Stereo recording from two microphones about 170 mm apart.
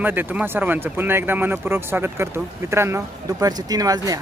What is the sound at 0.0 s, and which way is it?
Speech, 10° right (ahead or behind).